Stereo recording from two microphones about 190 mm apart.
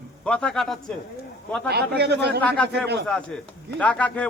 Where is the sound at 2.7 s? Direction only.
60° right (ahead or behind).